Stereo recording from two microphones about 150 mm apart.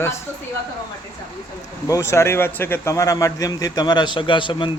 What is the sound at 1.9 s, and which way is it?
A man's voice, 20° left (ahead or behind).